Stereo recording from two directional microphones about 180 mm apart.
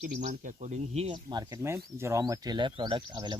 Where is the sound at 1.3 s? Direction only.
15° right (ahead or behind).